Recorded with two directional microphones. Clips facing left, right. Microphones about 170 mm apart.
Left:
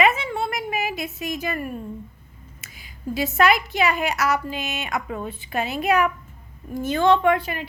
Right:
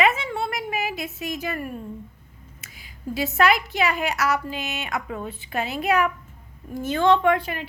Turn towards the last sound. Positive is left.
turn(degrees=5)  # may be behind; listen again after turning